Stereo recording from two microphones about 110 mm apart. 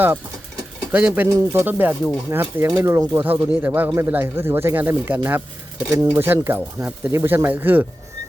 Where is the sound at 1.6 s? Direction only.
15° right (ahead or behind).